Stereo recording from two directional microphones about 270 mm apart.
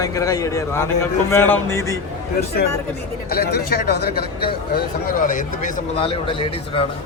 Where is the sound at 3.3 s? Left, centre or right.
Left; by 6.8 s centre.